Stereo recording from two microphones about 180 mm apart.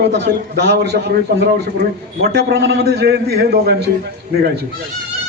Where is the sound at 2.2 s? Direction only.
65° right (ahead or behind).